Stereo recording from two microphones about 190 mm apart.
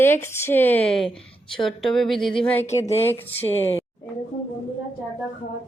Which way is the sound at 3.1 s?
10° left (ahead or behind).